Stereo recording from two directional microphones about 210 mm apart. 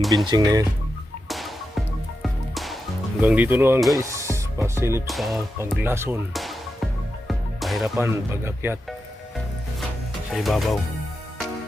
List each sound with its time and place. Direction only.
0.0 s speech: centre (ahead or behind)
0.3 s speech: 20° right (ahead or behind)
1.3 s music: centre (ahead or behind)
3.2 s speech: 10° right (ahead or behind)
5.0 s speech: centre (ahead or behind)
6.3 s music: centre (ahead or behind)
7.9 s speech: 10° right (ahead or behind)
10.3 s speech: centre (ahead or behind)